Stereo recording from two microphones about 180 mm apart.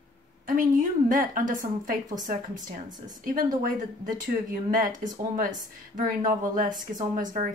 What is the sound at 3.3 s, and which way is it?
Speech, 50° right (ahead or behind).